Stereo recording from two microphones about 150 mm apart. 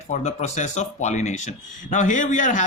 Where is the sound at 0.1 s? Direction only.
45° left (ahead or behind).